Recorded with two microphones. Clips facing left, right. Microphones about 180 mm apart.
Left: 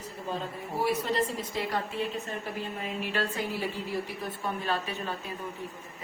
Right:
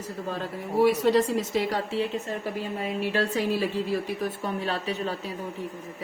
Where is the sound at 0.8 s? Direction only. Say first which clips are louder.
Right 8 dB; 80° right.